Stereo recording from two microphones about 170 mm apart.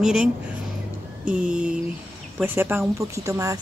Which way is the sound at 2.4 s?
10° right (ahead or behind).